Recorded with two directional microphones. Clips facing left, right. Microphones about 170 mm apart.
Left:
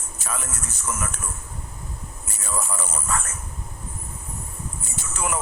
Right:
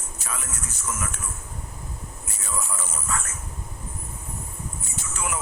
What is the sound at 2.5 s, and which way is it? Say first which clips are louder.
Speech: left 3 dB; 45° left (ahead or behind).